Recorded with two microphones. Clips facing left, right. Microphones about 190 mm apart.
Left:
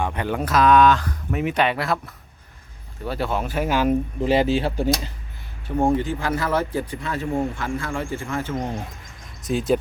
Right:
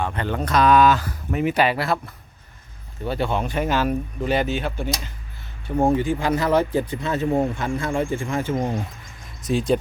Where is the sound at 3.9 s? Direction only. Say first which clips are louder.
Left 3 dB; 25° left (ahead or behind).